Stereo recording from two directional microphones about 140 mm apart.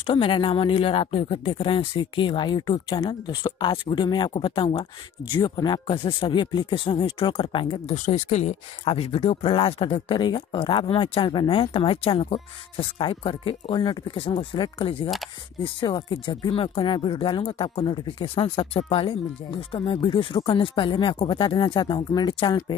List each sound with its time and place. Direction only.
0.0 s speech: 40° left (ahead or behind)
7.9 s speech: 55° left (ahead or behind)
8.8 s speech: 40° left (ahead or behind)